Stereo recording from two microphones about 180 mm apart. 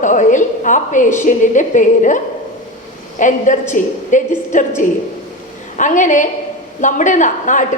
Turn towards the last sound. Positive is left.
turn(degrees=45)  # may be behind; listen again after turning